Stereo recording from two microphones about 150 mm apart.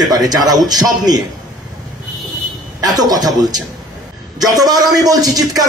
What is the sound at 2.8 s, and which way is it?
Speech, 25° right (ahead or behind).